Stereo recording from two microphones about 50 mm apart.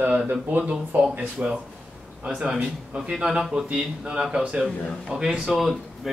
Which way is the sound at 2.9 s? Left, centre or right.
Centre.